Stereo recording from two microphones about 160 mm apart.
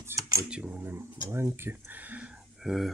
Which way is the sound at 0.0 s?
20° right (ahead or behind).